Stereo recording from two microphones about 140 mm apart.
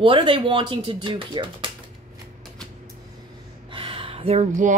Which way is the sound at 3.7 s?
40° right (ahead or behind).